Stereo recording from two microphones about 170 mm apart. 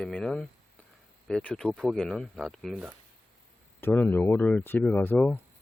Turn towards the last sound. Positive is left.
turn(degrees=10)  # may be behind; listen again after turning